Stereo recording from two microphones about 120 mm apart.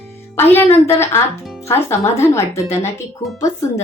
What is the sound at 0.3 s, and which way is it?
A woman's voice, 15° left (ahead or behind).